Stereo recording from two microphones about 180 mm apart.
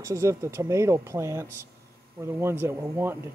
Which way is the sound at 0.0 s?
15° right (ahead or behind).